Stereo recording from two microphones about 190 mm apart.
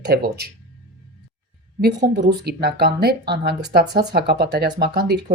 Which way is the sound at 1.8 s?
60° right (ahead or behind).